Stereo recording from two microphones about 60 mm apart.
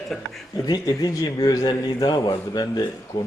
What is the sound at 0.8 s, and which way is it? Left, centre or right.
A man's voice, left.